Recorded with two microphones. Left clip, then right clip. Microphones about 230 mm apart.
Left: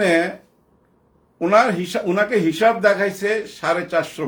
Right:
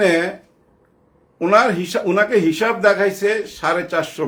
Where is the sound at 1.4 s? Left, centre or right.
Centre.